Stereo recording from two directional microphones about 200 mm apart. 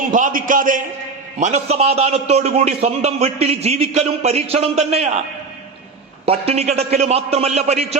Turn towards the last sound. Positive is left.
turn(degrees=-30)  # may be behind; listen again after turning